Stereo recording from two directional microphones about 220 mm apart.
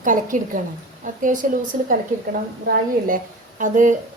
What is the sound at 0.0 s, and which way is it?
A woman's voice, 35° right (ahead or behind).